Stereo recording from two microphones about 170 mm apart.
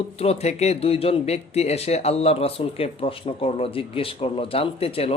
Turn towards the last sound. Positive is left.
turn(degrees=35)  # may be behind; listen again after turning